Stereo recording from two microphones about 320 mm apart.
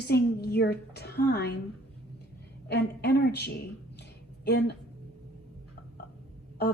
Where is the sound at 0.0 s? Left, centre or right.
Left.